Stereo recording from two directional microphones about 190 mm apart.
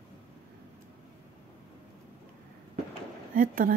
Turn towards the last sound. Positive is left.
turn(degrees=-45)  # may be behind; listen again after turning